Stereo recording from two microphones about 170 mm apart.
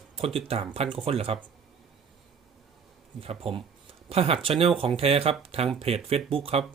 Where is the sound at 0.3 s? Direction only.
35° right (ahead or behind).